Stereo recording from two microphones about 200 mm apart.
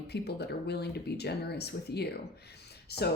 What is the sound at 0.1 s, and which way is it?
Speech, 55° left (ahead or behind).